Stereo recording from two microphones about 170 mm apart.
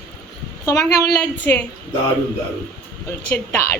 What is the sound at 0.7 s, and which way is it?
Speech, 15° left (ahead or behind).